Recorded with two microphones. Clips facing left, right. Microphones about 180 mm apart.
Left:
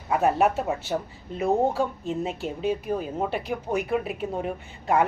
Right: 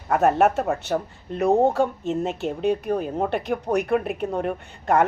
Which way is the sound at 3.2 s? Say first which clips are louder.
Right 3 dB; 50° right (ahead or behind).